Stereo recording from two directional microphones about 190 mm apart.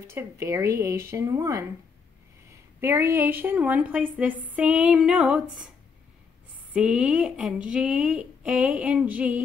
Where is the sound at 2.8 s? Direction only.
15° right (ahead or behind).